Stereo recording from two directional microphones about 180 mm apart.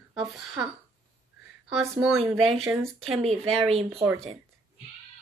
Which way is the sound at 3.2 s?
35° right (ahead or behind).